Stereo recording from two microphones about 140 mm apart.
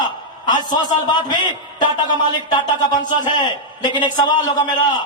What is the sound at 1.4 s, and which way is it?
Speech, 30° left (ahead or behind).